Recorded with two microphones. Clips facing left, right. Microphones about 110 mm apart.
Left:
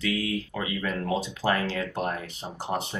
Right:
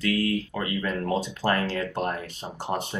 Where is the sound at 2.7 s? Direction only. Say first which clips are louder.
Right 1 dB; 10° right (ahead or behind).